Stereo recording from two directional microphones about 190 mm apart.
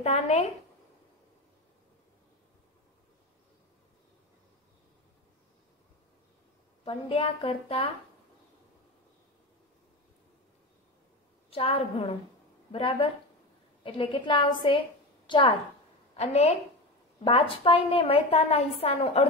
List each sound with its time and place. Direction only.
0.0 s a woman's voice: 35° left (ahead or behind)
6.8 s a woman's voice: 30° left (ahead or behind)
11.5 s a woman's voice: 30° left (ahead or behind)